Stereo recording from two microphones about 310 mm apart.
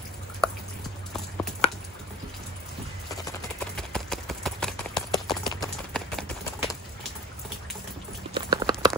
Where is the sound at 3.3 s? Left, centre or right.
Centre.